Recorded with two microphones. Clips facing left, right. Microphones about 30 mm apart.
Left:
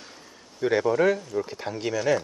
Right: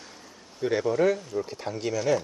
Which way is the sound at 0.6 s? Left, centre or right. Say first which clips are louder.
Left 2 dB; centre.